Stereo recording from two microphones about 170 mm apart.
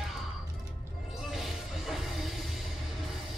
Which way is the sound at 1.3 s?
Centre (ahead or behind).